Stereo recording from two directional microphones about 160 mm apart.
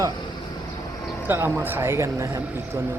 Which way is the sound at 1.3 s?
15° right (ahead or behind).